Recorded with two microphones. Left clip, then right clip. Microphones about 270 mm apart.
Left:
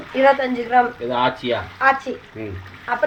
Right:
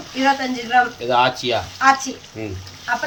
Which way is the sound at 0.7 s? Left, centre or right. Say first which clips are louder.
Even; left.